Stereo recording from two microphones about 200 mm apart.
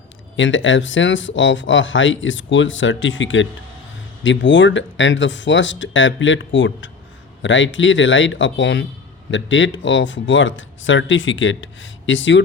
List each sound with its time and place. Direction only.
0.3 s speech: 70° left (ahead or behind)